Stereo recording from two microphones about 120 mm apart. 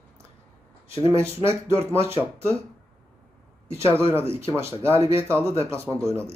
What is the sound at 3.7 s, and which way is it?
Speech, 20° right (ahead or behind).